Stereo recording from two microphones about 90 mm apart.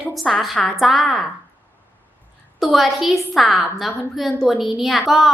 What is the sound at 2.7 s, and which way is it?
Speech, centre (ahead or behind).